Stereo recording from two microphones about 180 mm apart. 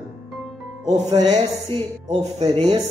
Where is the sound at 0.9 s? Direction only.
40° right (ahead or behind).